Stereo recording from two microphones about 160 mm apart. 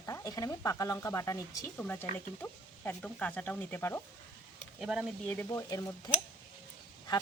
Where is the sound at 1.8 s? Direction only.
10° left (ahead or behind).